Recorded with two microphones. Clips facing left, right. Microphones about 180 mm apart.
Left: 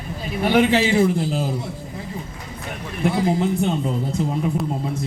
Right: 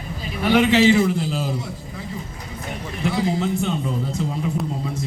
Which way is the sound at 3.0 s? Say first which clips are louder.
Left 2 dB; 50° left (ahead or behind).